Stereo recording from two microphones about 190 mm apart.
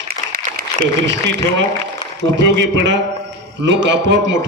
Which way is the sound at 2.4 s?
65° right (ahead or behind).